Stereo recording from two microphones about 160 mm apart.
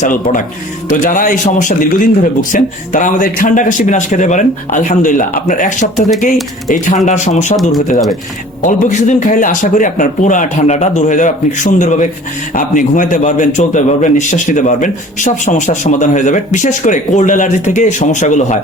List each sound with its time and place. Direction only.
0.0 s a man's voice: 55° left (ahead or behind)
8.6 s a man's voice: 50° left (ahead or behind)